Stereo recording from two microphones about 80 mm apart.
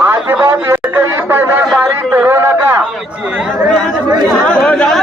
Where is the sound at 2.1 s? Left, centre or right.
Right.